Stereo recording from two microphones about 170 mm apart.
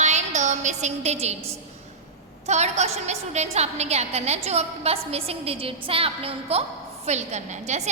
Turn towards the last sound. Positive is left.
turn(degrees=-40)  # may be behind; listen again after turning